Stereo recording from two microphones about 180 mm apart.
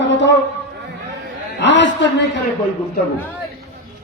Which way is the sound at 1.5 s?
80° left.